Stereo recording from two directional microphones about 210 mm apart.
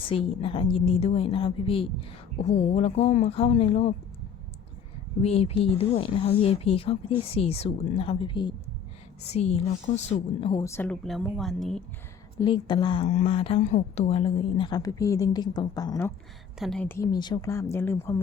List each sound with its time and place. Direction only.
0.0 s a woman's voice: 25° left (ahead or behind)
5.2 s a woman's voice: 30° left (ahead or behind)
10.6 s speech: 10° left (ahead or behind)
12.4 s a woman's voice: 20° left (ahead or behind)
13.1 s a woman's voice: 35° left (ahead or behind); by 16.1 s 15° left (ahead or behind)
16.6 s speech: centre (ahead or behind)